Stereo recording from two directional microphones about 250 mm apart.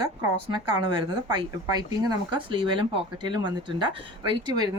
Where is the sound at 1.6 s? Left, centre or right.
Centre.